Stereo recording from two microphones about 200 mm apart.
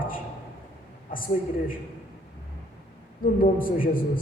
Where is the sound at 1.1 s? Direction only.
45° left (ahead or behind).